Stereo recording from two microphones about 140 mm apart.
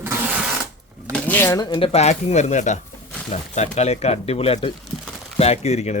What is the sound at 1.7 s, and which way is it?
Speech, 45° left (ahead or behind).